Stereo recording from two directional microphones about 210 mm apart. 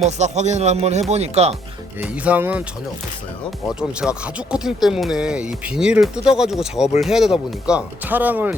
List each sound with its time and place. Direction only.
0.0 s speech: 35° right (ahead or behind)
2.0 s speech: 5° right (ahead or behind)
3.8 s speech: 5° right (ahead or behind)